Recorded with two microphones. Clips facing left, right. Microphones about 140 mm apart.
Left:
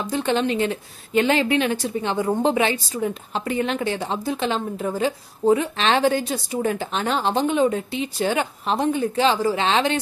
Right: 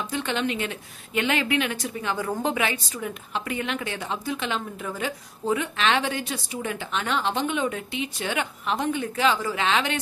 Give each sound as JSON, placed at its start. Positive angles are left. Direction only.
{"t": 0.0, "sound": "a woman's voice", "side_deg": 35}